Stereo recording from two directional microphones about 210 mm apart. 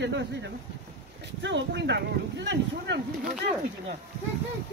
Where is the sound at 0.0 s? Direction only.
55° right (ahead or behind).